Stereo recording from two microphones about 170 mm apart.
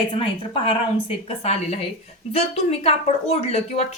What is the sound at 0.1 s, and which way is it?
Speech, 30° left (ahead or behind).